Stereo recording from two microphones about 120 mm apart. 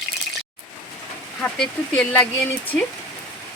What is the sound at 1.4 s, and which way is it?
Speech, 10° left (ahead or behind).